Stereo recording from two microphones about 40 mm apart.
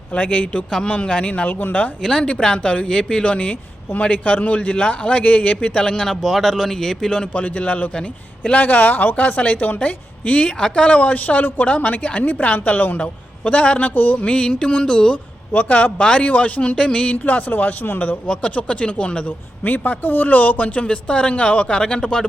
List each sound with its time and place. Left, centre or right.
0.1 s speech: left
1.3 s speech: left
2.0 s speech: centre
3.3 s speech: left
6.2 s speech: centre
7.4 s a woman's voice: left
13.0 s speech: left
14.3 s speech: left
15.1 s speech: left
17.2 s a woman's voice: left
18.5 s speech: left
19.6 s speech: left; by 22.3 s centre